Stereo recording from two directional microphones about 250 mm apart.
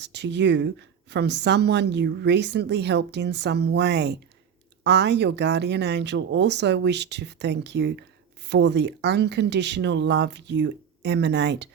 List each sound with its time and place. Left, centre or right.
0.0 s speech: right